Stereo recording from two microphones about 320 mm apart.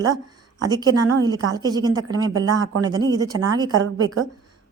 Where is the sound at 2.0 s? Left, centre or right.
Right.